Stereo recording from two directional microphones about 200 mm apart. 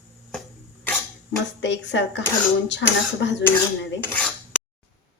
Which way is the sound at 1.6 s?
60° left (ahead or behind).